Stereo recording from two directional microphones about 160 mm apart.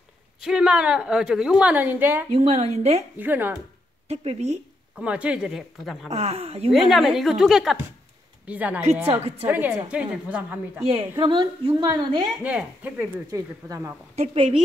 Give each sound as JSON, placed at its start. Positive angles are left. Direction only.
{"t": 0.4, "sound": "a woman's voice", "side_deg": -5}
{"t": 2.3, "sound": "a woman's voice", "side_deg": -45}
{"t": 3.2, "sound": "a woman's voice", "side_deg": -10}
{"t": 4.1, "sound": "a woman's voice", "side_deg": -40}
{"t": 4.9, "sound": "a woman's voice", "side_deg": -5}
{"t": 6.0, "sound": "a woman's voice", "side_deg": -40}
{"t": 6.7, "sound": "a woman's voice", "side_deg": 0}
{"t": 10.9, "sound": "a woman's voice", "side_deg": -35}
{"t": 12.4, "sound": "a woman's voice", "side_deg": -10}
{"t": 14.1, "sound": "a woman's voice", "side_deg": -40}